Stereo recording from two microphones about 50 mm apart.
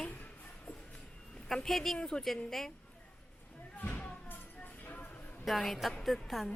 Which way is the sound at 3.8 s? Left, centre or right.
Left.